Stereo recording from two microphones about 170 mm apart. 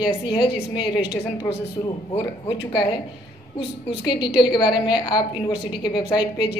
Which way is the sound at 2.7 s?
25° left (ahead or behind).